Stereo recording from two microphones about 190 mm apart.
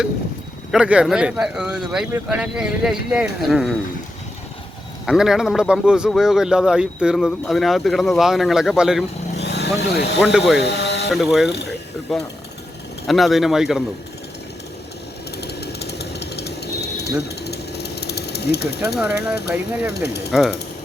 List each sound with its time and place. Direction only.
0.7 s speech: 5° right (ahead or behind)
5.0 s speech: 5° right (ahead or behind)
9.3 s a sound: 60° left (ahead or behind)
10.2 s speech: centre (ahead or behind)
10.6 s a sound: 60° left (ahead or behind)
11.1 s speech: centre (ahead or behind)
15.4 s jackhammer: 60° left (ahead or behind)
19.9 s speech: 60° left (ahead or behind)
20.3 s speech: centre (ahead or behind)